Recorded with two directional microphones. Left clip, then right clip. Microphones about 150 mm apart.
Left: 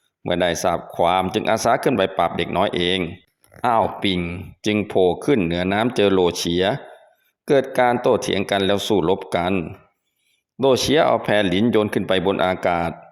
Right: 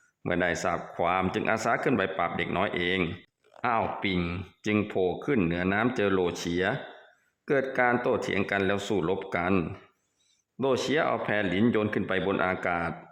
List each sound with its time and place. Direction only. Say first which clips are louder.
0.3 s speech: left 8 dB; 25° left (ahead or behind)
4.2 s speech: left 5 dB; 10° left (ahead or behind)
4.9 s speech: left 10 dB; 35° left (ahead or behind)
10.6 s speech: left 10 dB; 30° left (ahead or behind)